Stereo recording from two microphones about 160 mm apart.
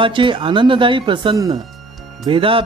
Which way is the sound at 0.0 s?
30° right (ahead or behind).